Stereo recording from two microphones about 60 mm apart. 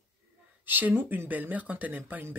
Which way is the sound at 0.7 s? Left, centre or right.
Right.